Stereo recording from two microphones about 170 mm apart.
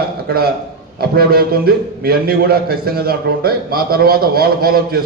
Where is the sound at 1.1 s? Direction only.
65° right (ahead or behind).